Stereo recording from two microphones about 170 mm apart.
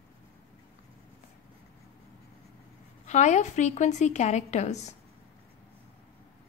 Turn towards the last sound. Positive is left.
turn(degrees=40)  # may be behind; listen again after turning